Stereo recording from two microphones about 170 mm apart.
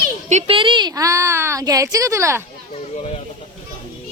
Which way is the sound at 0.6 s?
30° right (ahead or behind).